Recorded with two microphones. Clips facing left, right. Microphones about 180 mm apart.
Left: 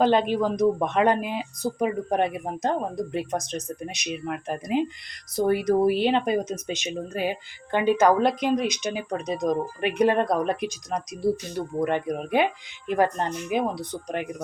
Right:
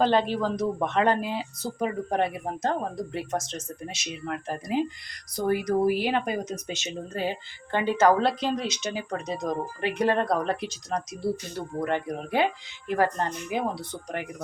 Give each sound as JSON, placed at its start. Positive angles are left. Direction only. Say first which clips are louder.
{"t": 0.0, "sound": "speech", "louder": "left 2 dB", "side_deg": 15}